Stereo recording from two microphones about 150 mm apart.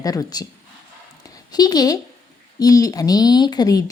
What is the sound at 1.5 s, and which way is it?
A woman's voice, 25° left (ahead or behind).